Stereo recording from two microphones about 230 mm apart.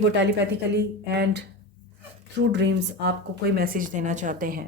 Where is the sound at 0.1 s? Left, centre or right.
Right.